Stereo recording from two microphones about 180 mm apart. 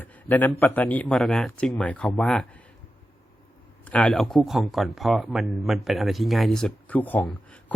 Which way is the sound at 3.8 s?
5° left (ahead or behind).